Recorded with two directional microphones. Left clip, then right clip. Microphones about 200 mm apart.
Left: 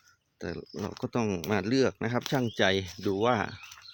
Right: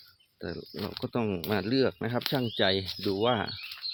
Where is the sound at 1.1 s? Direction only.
15° left (ahead or behind).